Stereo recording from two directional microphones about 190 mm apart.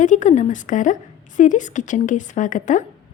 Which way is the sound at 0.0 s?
40° left (ahead or behind).